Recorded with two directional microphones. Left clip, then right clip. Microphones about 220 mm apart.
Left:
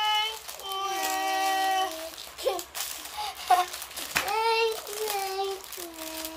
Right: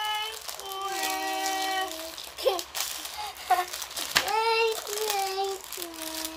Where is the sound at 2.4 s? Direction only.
20° right (ahead or behind).